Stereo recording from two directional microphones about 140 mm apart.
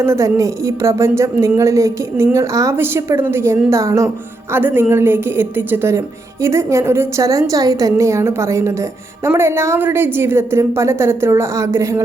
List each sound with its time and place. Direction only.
0.0 s a woman's voice: 20° right (ahead or behind)